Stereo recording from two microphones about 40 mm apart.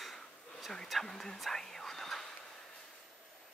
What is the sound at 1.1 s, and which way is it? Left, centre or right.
Speech, centre.